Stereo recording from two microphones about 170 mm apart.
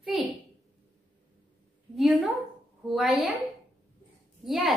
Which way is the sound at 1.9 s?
Centre (ahead or behind).